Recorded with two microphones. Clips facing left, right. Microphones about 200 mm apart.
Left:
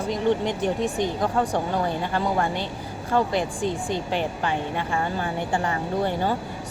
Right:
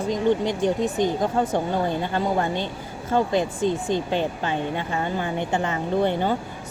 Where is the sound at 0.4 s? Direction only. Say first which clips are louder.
Right 2 dB; 20° right (ahead or behind).